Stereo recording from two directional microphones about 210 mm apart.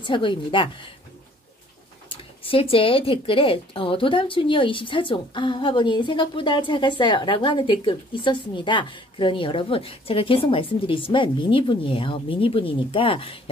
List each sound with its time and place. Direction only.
0.0 s a woman's voice: 25° left (ahead or behind)
2.4 s a woman's voice: 25° left (ahead or behind)